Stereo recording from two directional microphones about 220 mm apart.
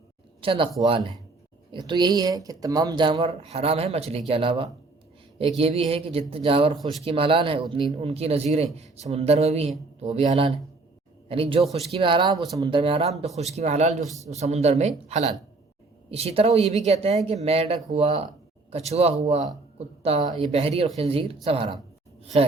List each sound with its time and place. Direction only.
0.4 s a woman's voice: 25° right (ahead or behind)